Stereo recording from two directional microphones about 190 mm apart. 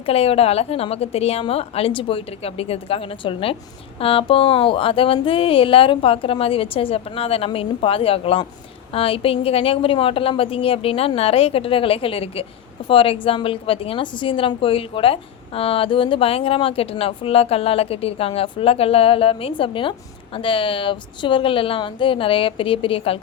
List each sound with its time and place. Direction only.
0.0 s a woman's voice: 30° left (ahead or behind)